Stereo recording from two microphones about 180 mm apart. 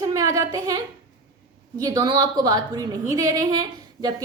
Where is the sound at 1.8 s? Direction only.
20° right (ahead or behind).